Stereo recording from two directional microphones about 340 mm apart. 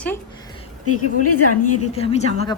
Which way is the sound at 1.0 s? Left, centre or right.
Left.